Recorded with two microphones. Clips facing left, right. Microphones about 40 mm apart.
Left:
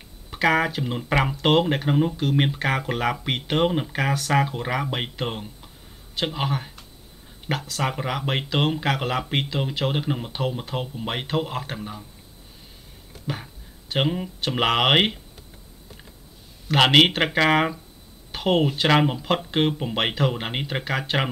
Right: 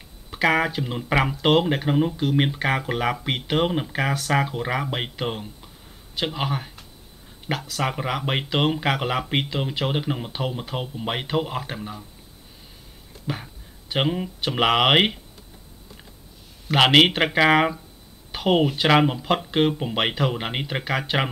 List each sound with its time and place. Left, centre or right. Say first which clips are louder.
0.3 s speech: even; centre
13.3 s speech: right 1 dB; centre
16.6 s speech: right 1 dB; centre